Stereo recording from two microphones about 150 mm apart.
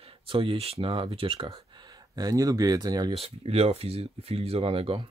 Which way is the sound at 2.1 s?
25° right (ahead or behind).